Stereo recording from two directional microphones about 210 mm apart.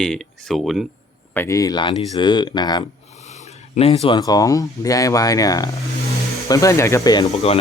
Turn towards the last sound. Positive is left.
turn(degrees=25)  # may be behind; listen again after turning